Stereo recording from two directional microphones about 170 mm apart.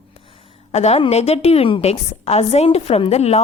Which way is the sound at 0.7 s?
40° left (ahead or behind).